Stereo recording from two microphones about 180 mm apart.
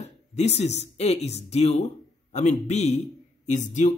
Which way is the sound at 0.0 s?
40° left (ahead or behind).